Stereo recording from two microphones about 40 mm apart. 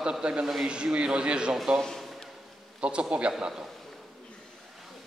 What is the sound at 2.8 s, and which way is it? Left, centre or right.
Speech, right.